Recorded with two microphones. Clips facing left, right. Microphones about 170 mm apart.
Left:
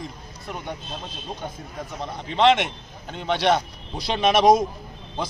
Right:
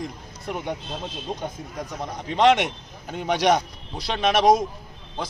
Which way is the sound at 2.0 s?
10° right (ahead or behind).